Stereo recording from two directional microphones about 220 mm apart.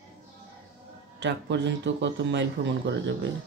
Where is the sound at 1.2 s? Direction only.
55° right (ahead or behind).